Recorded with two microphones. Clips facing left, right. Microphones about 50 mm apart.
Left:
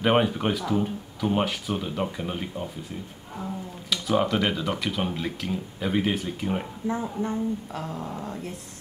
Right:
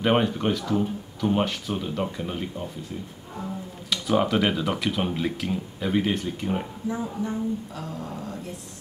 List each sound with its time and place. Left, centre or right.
0.0 s speech: centre
3.9 s speech: centre
6.9 s a woman's voice: left